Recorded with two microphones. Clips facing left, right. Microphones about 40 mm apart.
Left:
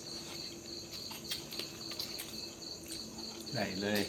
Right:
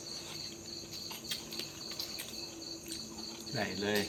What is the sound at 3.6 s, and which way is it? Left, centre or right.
Speech, right.